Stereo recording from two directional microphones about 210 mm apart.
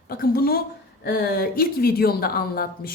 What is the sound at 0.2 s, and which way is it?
A woman's voice, 45° left (ahead or behind).